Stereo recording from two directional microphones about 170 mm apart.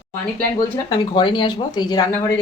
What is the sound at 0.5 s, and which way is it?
Speech, 25° left (ahead or behind).